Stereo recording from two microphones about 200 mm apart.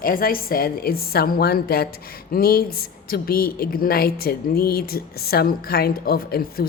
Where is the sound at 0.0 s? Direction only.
45° left (ahead or behind).